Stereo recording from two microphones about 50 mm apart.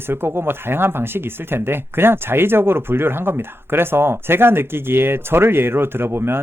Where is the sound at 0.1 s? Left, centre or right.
Right.